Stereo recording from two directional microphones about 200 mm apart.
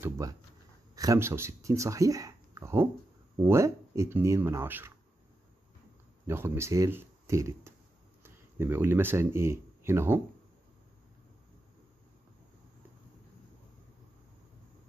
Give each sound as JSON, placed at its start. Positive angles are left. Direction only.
{"t": 0.0, "sound": "speech", "side_deg": -15}
{"t": 6.2, "sound": "speech", "side_deg": -10}